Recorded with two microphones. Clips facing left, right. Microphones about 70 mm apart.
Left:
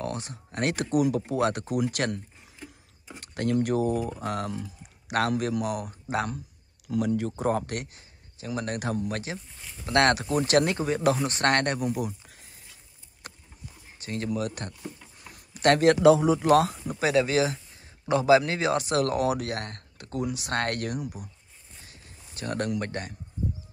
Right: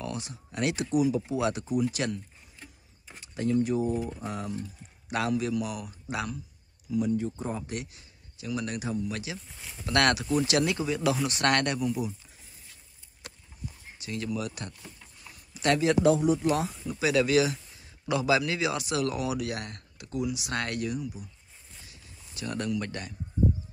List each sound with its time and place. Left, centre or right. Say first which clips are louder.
0.0 s speech: left 3 dB; left
1.7 s speech: left 1 dB; left
5.1 s speech: left 2 dB; left
6.9 s speech: left 1 dB; left
7.8 s a man's voice: left 1 dB; left
8.7 s speech: left 2 dB; left
9.5 s speech: even; centre
9.8 s speech: left 3 dB; left
10.3 s speech: left 3 dB; left
11.9 s speech: left 1 dB; left
13.9 s speech: left 3 dB; left
16.9 s speech: even; left
21.8 s a sound: left 1 dB; left